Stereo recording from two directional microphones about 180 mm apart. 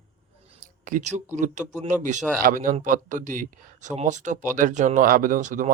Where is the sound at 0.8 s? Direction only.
45° right (ahead or behind).